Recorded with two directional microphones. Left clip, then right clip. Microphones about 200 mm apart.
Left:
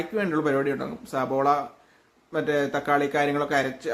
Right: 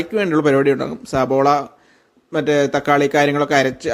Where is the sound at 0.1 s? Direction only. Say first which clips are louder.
Right 9 dB; 40° right (ahead or behind).